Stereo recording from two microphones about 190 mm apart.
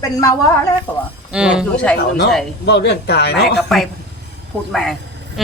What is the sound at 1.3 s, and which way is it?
Speech, 5° right (ahead or behind).